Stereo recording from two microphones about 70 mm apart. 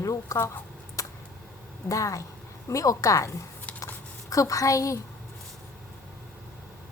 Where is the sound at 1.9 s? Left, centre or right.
Left.